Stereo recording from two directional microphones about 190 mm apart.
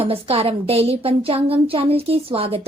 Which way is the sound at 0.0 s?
30° right (ahead or behind).